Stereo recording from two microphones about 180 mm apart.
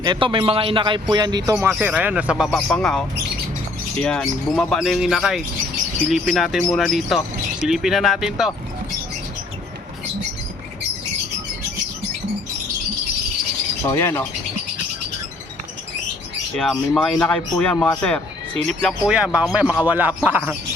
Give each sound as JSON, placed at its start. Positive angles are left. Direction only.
{"t": 0.0, "sound": "a man's voice", "side_deg": -25}
{"t": 1.5, "sound": "speech", "side_deg": -10}
{"t": 4.0, "sound": "speech", "side_deg": 5}
{"t": 13.8, "sound": "speech", "side_deg": 15}
{"t": 16.6, "sound": "speech", "side_deg": 0}